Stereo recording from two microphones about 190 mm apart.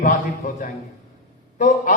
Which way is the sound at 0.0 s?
45° left (ahead or behind).